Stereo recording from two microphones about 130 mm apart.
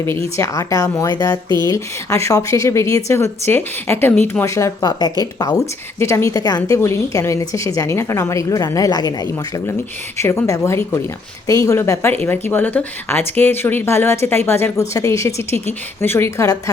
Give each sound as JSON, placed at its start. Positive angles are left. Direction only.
{"t": 0.0, "sound": "a woman's voice", "side_deg": 20}
{"t": 10.2, "sound": "a woman's voice", "side_deg": 20}